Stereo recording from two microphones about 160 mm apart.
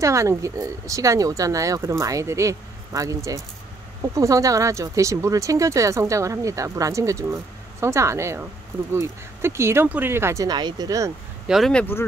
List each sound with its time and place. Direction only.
0.0 s speech: 20° right (ahead or behind)
11.4 s speech: centre (ahead or behind)